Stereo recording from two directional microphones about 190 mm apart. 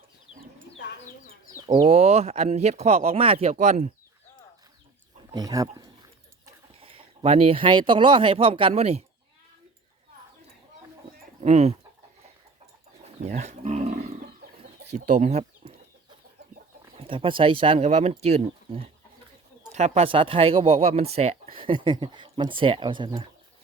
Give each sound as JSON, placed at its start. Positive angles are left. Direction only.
{"t": 1.6, "sound": "speech", "side_deg": -30}
{"t": 5.3, "sound": "speech", "side_deg": -20}
{"t": 5.7, "sound": "a sound", "side_deg": -20}
{"t": 11.3, "sound": "speech", "side_deg": -35}
{"t": 13.2, "sound": "speech", "side_deg": -35}
{"t": 17.0, "sound": "speech", "side_deg": -25}